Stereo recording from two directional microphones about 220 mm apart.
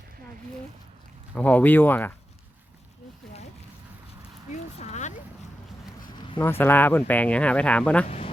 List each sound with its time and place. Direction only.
1.4 s speech: 5° left (ahead or behind)
4.8 s speech: 30° left (ahead or behind)
6.1 s zipper: 20° left (ahead or behind)
6.4 s speech: 10° left (ahead or behind)